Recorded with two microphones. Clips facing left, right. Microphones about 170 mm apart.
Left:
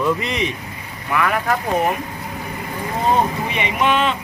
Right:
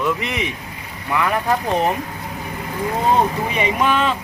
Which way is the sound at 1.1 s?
20° right (ahead or behind).